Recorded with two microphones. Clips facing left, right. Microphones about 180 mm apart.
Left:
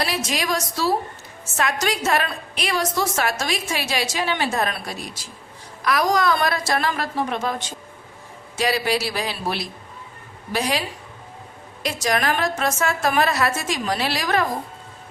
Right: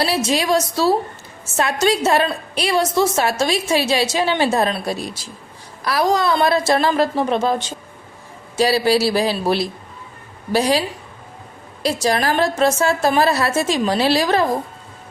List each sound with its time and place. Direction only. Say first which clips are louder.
0.0 s a woman's voice: right 6 dB; 30° right (ahead or behind)